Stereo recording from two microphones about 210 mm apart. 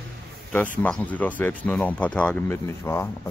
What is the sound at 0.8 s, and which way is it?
Speech, 5° left (ahead or behind).